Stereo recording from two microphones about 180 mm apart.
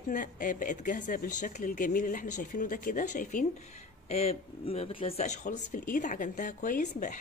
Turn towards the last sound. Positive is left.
turn(degrees=50)  # may be behind; listen again after turning